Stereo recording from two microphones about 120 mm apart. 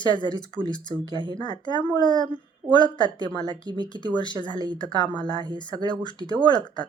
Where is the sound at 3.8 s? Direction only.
40° left (ahead or behind).